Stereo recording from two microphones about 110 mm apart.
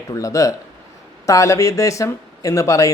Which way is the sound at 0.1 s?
30° left (ahead or behind).